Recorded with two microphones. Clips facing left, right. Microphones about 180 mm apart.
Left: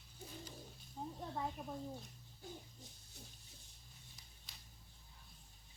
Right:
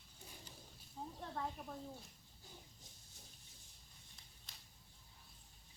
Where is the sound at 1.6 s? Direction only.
15° left (ahead or behind).